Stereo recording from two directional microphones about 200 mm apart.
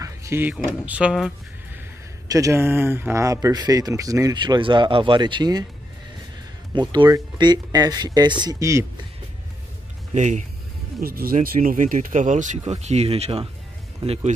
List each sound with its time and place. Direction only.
0.0 s speech: 15° right (ahead or behind)
2.2 s speech: 15° right (ahead or behind)
6.7 s speech: 20° right (ahead or behind)
10.1 s speech: 35° right (ahead or behind)
11.0 s speech: 45° right (ahead or behind); by 14.3 s 30° right (ahead or behind)